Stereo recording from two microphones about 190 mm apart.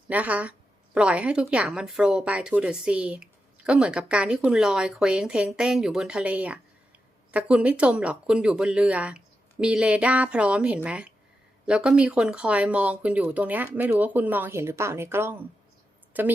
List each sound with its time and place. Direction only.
0.1 s speech: 10° right (ahead or behind)